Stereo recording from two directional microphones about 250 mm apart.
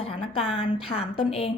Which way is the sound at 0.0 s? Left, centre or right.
Left.